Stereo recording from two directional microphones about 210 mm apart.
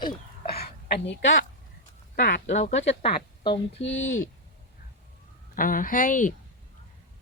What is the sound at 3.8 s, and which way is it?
Speech, 60° left (ahead or behind).